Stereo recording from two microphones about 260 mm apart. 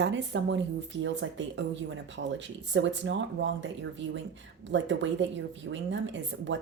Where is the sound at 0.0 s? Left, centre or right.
Right.